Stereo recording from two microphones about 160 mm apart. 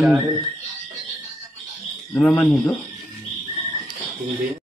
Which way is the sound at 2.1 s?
10° left (ahead or behind).